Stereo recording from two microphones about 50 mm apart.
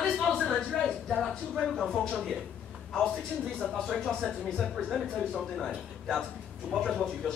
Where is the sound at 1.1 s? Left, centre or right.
Centre.